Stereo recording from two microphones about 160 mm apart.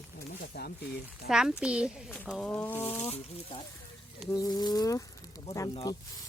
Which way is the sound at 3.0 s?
40° left (ahead or behind).